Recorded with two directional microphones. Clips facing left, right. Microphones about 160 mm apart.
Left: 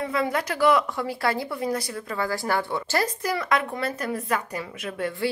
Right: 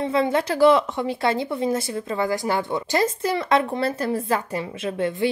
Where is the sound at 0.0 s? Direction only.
25° right (ahead or behind).